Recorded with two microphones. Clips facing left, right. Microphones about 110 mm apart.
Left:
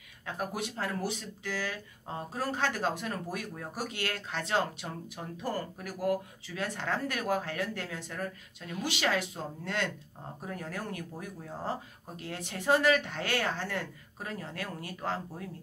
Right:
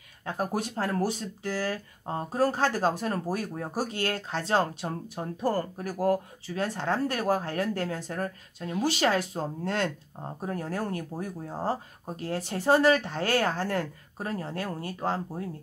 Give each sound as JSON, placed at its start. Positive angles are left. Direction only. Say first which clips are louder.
{"t": 0.2, "sound": "speech", "louder": "right 5 dB", "side_deg": -35}